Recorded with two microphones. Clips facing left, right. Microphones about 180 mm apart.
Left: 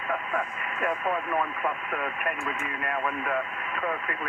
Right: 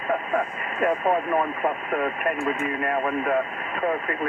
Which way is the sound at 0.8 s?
35° right (ahead or behind).